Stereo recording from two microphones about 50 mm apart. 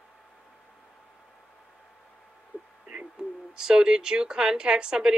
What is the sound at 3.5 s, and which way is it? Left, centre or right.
Speech, centre.